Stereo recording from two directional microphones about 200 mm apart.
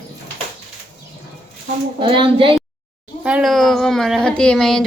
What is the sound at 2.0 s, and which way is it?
Speech, 25° right (ahead or behind).